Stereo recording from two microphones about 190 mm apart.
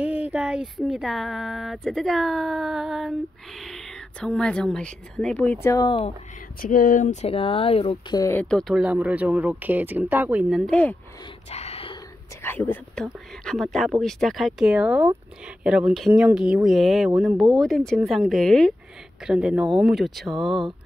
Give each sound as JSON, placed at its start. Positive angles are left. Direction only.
{"t": 0.0, "sound": "speech", "side_deg": -5}
{"t": 6.6, "sound": "speech", "side_deg": 45}
{"t": 8.2, "sound": "speech", "side_deg": 10}
{"t": 10.7, "sound": "speech", "side_deg": 5}
{"t": 11.5, "sound": "whispering", "side_deg": 30}
{"t": 12.4, "sound": "speech", "side_deg": 10}